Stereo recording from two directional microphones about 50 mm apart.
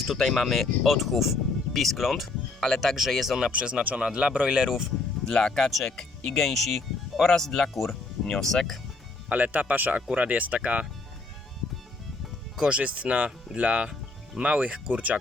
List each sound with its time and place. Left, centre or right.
0.1 s speech: centre
3.5 s speech: right
5.2 s speech: centre
9.3 s speech: right
12.5 s speech: centre